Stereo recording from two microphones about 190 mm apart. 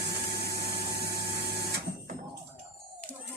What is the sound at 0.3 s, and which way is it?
Printer, 60° right (ahead or behind).